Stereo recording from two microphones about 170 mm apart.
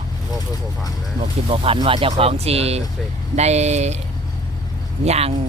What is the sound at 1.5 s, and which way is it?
Speech, 30° right (ahead or behind).